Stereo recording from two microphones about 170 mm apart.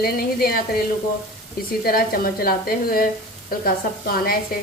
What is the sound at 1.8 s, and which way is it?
Speech, 60° left (ahead or behind).